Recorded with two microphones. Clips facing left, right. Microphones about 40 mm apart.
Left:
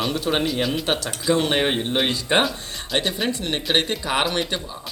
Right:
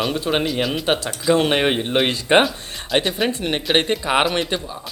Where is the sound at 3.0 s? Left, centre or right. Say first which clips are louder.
Right 3 dB; centre.